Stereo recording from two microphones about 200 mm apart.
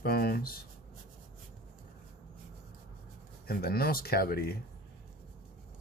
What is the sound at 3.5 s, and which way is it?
Speech, 50° left (ahead or behind).